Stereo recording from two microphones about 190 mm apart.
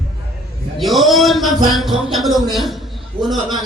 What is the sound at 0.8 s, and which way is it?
A man's voice, centre (ahead or behind).